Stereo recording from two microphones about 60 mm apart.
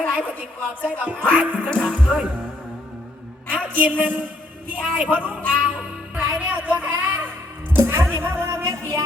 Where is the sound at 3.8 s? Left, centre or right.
Right.